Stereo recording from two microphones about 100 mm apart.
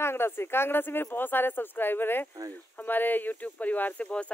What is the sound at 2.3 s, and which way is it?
Speech, 40° right (ahead or behind).